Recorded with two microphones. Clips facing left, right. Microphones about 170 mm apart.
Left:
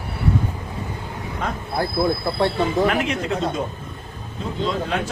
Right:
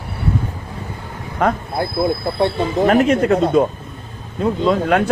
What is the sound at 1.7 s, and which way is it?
Speech, 20° right (ahead or behind).